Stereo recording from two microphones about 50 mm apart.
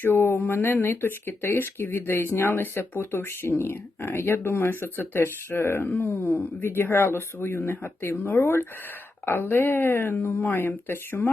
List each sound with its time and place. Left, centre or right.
0.0 s speech: left
9.2 s speech: left